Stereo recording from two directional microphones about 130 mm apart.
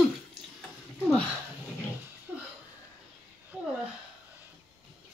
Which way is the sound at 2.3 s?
10° right (ahead or behind).